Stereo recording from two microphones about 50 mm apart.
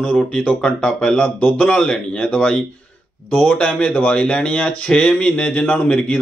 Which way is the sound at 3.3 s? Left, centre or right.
Left.